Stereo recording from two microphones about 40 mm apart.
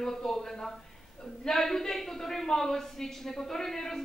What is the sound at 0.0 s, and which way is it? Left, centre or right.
A woman's voice, centre.